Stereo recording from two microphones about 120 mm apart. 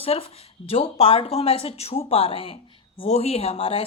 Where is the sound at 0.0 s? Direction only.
55° left (ahead or behind).